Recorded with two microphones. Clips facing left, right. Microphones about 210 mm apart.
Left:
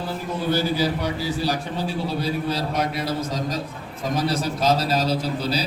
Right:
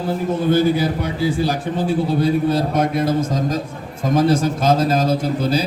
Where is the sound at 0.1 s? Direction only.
50° right (ahead or behind).